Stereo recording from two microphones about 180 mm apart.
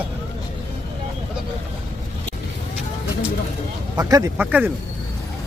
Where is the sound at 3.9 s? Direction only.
20° right (ahead or behind).